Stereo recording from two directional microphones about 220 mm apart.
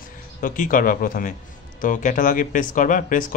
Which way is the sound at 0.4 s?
40° left (ahead or behind).